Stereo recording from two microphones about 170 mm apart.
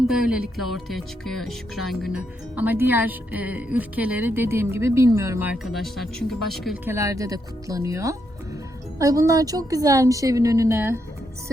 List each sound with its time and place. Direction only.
0.1 s speech: 5° right (ahead or behind)
5.7 s speech: centre (ahead or behind)
6.8 s a woman's voice: 15° right (ahead or behind)